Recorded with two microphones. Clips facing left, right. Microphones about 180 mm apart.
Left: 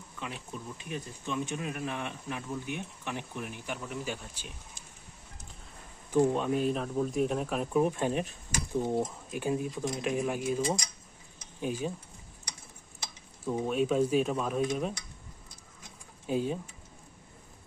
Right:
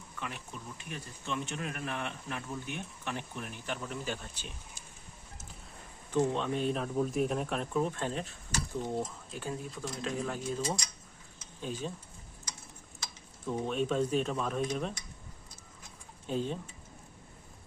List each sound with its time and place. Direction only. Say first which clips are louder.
0.8 s speech: left 5 dB; 15° left (ahead or behind)
6.1 s speech: left 4 dB; 10° left (ahead or behind)
7.7 s speech: left 8 dB; 15° left (ahead or behind)
11.3 s a sound: left 5 dB; 10° left (ahead or behind)
13.4 s speech: left 3 dB; 5° left (ahead or behind)
16.2 s speech: left 3 dB; 10° left (ahead or behind)